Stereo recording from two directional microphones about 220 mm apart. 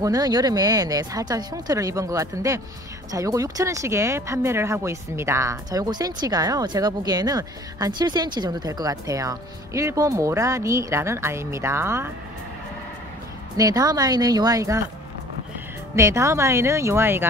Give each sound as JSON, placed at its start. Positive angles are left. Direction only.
{"t": 0.0, "sound": "speech", "side_deg": -15}
{"t": 13.6, "sound": "speech", "side_deg": -15}
{"t": 16.0, "sound": "speech", "side_deg": -15}